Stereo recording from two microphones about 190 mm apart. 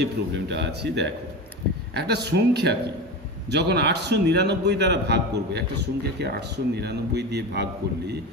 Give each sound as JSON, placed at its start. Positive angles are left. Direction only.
{"t": 0.0, "sound": "a man's voice", "side_deg": -60}